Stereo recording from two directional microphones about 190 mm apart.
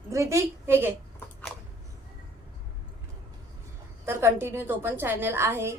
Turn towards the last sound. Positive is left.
turn(degrees=-15)  # may be behind; listen again after turning